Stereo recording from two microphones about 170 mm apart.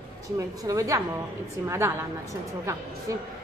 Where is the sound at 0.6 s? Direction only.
20° right (ahead or behind).